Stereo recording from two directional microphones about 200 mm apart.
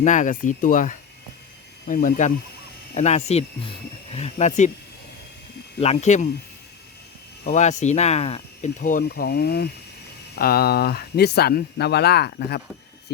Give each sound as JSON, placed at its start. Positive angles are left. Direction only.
{"t": 0.0, "sound": "speech", "side_deg": 40}
{"t": 5.8, "sound": "speech", "side_deg": 35}
{"t": 7.4, "sound": "speech", "side_deg": 35}